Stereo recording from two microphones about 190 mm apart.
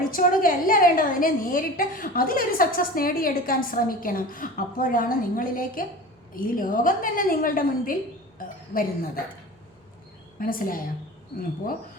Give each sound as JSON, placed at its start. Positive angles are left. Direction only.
{"t": 0.1, "sound": "a woman's voice", "side_deg": 45}
{"t": 10.4, "sound": "a woman's voice", "side_deg": 50}